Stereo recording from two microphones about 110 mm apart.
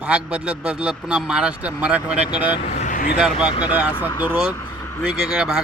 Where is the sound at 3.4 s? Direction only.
45° left (ahead or behind).